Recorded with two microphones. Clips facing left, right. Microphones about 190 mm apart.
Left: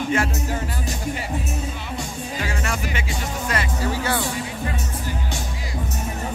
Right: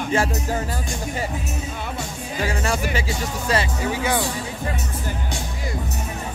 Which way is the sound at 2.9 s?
30° right (ahead or behind).